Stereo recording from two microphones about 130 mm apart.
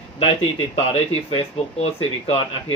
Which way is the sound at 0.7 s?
45° left (ahead or behind).